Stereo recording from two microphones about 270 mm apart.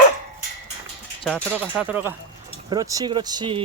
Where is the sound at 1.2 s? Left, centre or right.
Centre.